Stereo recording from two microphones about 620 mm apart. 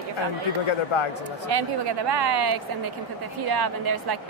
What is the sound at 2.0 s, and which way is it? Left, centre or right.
Speech, right.